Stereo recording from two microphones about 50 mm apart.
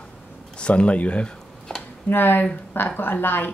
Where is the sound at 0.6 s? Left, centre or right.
Left.